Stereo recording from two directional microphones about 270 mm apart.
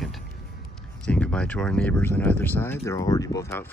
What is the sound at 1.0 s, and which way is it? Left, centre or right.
Speech, centre.